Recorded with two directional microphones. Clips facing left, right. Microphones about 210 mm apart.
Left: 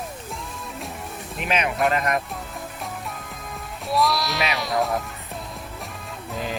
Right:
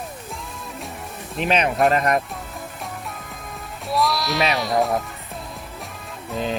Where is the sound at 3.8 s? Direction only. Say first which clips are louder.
Even; centre (ahead or behind).